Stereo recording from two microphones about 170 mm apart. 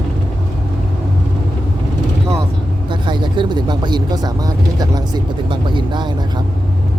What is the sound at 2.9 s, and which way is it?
Vehicle, 25° right (ahead or behind).